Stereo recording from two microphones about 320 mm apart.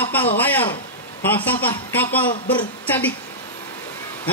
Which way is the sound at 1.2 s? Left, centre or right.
Centre.